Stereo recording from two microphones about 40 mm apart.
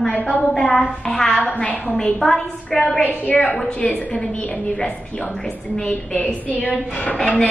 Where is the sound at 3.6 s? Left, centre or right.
Left.